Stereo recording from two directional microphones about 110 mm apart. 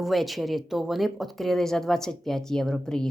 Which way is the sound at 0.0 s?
Centre (ahead or behind).